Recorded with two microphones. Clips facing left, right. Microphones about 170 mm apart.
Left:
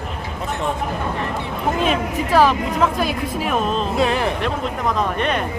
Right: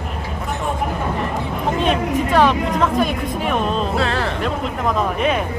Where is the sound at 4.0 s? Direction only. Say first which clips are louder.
Left 2 dB; 15° left (ahead or behind).